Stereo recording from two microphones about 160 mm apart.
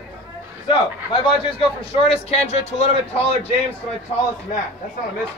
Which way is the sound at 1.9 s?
40° left (ahead or behind).